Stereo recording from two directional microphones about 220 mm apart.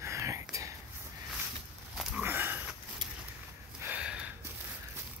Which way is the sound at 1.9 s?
5° right (ahead or behind).